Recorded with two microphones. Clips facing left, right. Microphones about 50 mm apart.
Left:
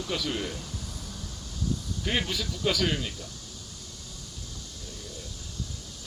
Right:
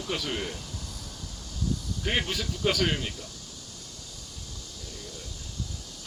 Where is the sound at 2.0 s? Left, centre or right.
Right.